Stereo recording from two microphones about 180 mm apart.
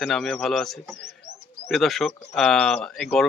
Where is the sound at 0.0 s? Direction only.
Centre (ahead or behind).